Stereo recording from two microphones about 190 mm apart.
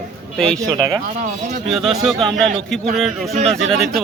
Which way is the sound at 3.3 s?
35° right (ahead or behind).